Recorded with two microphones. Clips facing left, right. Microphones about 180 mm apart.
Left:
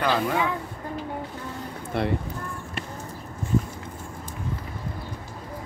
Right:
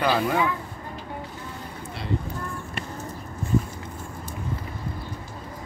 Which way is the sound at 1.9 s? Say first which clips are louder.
Left 13 dB; 55° left (ahead or behind).